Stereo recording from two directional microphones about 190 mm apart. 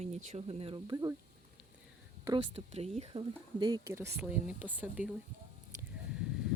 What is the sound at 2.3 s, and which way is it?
Speech, 30° right (ahead or behind).